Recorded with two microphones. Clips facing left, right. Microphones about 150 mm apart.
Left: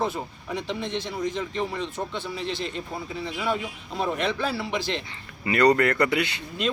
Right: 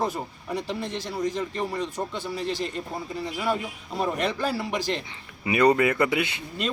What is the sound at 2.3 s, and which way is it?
Speech, 40° right (ahead or behind).